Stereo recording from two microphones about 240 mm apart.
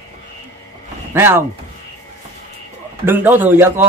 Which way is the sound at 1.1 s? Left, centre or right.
Centre.